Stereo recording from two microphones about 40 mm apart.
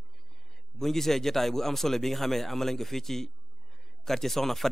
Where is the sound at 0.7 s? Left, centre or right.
Centre.